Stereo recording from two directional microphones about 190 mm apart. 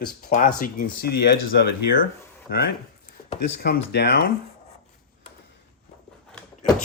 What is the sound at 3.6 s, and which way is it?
Speech, 60° left (ahead or behind).